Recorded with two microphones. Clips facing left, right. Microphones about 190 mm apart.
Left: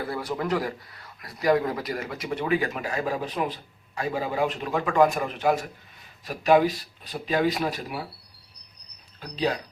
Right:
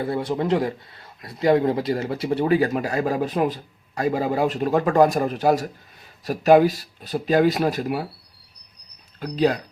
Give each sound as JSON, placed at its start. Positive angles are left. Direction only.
{"t": 0.0, "sound": "speech", "side_deg": -25}
{"t": 9.2, "sound": "speech", "side_deg": -45}